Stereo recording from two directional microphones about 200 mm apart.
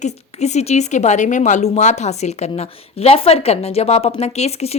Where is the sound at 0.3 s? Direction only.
35° left (ahead or behind).